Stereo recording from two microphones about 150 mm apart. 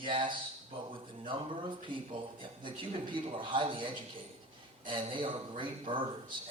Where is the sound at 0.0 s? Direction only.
35° right (ahead or behind).